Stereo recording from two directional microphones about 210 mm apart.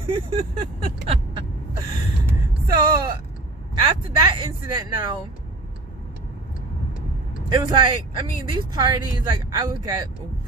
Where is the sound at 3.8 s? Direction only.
25° right (ahead or behind).